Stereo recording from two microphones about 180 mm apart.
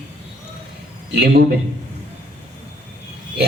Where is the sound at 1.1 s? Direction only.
65° right (ahead or behind).